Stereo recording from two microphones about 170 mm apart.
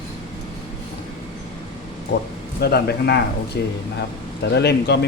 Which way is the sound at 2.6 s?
70° left (ahead or behind).